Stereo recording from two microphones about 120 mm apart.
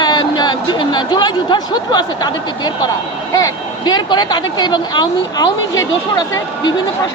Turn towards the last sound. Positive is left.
turn(degrees=30)  # may be behind; listen again after turning